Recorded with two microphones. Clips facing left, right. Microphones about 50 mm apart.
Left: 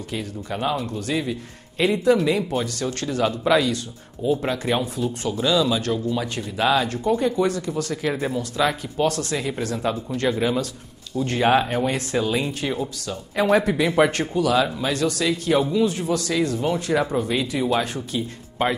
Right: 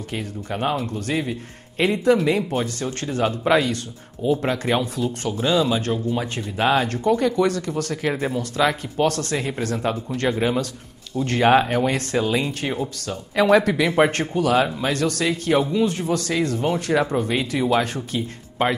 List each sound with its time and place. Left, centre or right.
0.1 s speech: right
5.3 s speech: right